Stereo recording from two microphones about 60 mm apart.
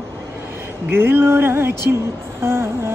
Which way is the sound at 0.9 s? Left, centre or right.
Right.